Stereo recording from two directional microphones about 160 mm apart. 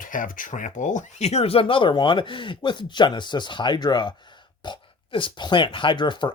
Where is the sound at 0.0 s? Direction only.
55° left (ahead or behind).